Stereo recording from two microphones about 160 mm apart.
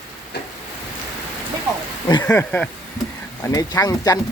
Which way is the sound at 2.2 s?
10° left (ahead or behind).